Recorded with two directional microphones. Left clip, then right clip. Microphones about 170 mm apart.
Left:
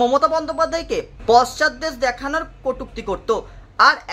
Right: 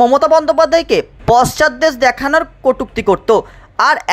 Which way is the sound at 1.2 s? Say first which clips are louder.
Right 3 dB; 45° right (ahead or behind).